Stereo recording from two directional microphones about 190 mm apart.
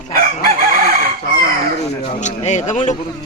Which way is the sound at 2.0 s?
40° left (ahead or behind).